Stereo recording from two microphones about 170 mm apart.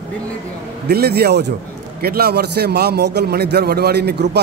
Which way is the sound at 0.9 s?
65° right (ahead or behind).